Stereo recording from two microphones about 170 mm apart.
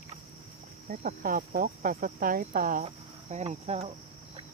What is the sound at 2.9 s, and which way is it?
Cricket, 40° right (ahead or behind).